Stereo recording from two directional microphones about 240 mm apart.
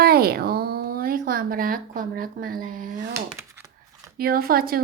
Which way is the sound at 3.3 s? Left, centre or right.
Centre.